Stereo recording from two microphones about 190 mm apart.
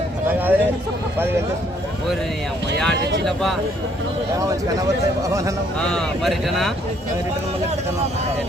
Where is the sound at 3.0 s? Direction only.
60° right (ahead or behind).